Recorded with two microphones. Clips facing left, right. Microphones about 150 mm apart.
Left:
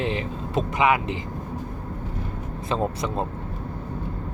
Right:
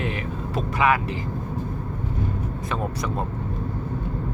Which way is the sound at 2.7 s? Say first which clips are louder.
Left 4 dB; 25° left (ahead or behind).